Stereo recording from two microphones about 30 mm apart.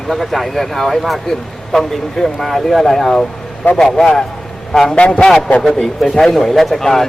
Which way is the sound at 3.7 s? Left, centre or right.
Centre.